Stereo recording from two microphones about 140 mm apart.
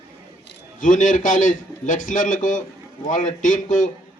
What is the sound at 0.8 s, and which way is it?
A man's voice, 65° left (ahead or behind).